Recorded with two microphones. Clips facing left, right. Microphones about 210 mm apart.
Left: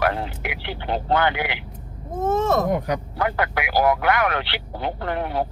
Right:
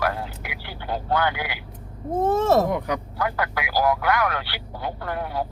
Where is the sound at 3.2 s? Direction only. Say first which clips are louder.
Left 3 dB; 25° left (ahead or behind).